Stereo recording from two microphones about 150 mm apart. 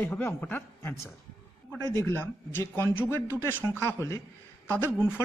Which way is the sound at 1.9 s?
15° left (ahead or behind).